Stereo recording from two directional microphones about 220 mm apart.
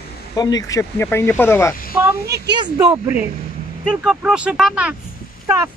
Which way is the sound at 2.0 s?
10° right (ahead or behind).